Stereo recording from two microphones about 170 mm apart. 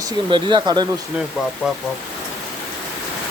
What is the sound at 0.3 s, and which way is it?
Speech, 25° right (ahead or behind).